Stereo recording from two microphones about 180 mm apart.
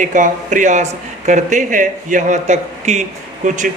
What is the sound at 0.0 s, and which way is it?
A man's voice, 45° right (ahead or behind).